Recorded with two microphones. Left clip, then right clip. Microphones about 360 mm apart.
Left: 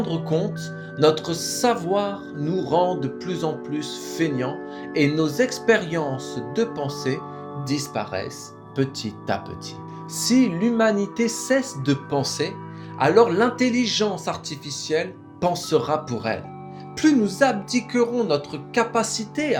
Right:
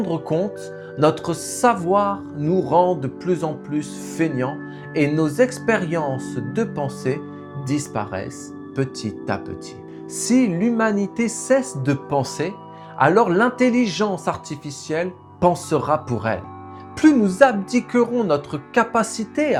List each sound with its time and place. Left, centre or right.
0.0 s speech: right
8.7 s speech: right